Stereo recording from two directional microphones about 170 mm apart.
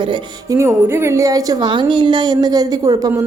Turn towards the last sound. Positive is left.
turn(degrees=-20)  # may be behind; listen again after turning